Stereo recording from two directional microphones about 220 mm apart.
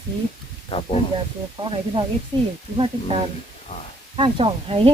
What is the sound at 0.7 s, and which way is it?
Speech, 25° left (ahead or behind).